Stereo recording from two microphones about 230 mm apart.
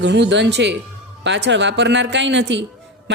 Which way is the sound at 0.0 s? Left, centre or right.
Right.